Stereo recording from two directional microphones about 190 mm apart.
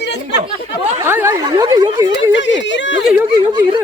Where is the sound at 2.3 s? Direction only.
75° left (ahead or behind).